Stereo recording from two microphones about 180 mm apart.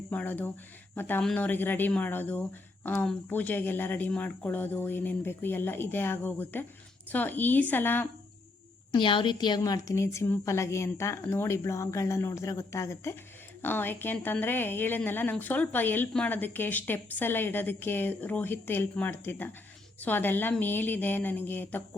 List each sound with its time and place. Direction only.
0.1 s speech: 10° left (ahead or behind)
8.9 s speech: 25° left (ahead or behind); by 21.8 s 10° left (ahead or behind)